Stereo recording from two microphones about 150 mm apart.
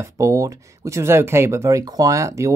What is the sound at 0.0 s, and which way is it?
Speech, 20° right (ahead or behind).